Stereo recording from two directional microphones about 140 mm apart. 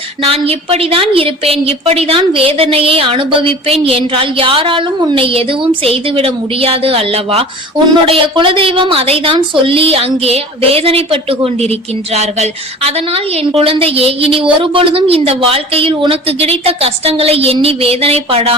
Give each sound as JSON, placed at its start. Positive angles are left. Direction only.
{"t": 0.2, "sound": "a woman's voice", "side_deg": -45}